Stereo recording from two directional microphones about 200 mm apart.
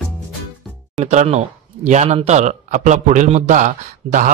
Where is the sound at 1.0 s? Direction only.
35° right (ahead or behind).